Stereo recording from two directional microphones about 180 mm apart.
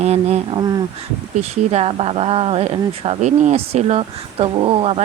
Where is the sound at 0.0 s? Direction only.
35° right (ahead or behind).